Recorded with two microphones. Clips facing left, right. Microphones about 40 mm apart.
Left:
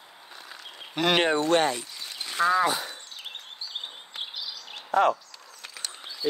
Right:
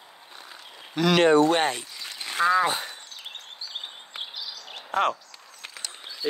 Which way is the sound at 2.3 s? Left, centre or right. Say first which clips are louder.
Right 2 dB; centre.